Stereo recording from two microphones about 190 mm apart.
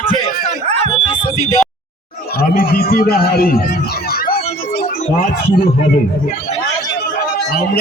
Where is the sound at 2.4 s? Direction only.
55° left (ahead or behind).